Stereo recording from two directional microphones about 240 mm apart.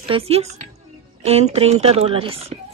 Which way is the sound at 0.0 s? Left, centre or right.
Right.